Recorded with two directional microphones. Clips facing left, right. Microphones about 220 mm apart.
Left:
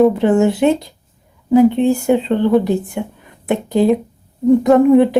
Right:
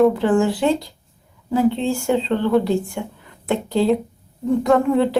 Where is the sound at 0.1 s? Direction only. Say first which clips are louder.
Left 4 dB; 20° left (ahead or behind).